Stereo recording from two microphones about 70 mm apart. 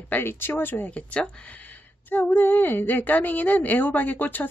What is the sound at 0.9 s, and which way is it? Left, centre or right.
Speech, centre.